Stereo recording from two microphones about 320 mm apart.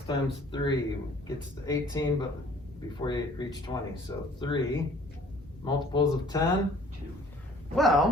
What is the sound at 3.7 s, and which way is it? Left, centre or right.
Speech, centre.